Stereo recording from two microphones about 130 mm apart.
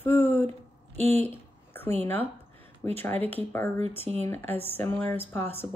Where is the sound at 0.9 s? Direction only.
55° right (ahead or behind).